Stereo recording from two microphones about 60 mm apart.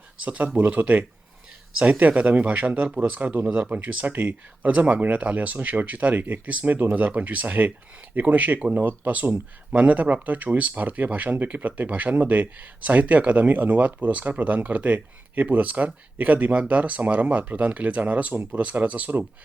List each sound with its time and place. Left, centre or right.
0.3 s speech: right